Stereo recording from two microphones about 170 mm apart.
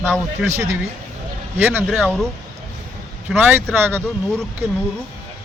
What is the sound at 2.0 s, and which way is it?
Speech, 5° left (ahead or behind).